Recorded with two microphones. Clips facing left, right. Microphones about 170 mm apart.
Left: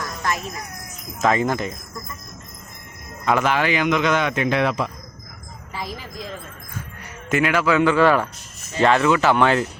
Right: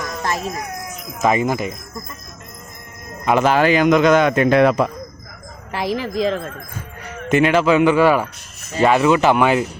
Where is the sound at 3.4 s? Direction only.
40° right (ahead or behind).